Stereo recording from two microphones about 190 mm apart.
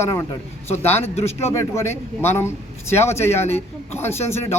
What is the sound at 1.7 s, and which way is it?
Speech, 10° left (ahead or behind).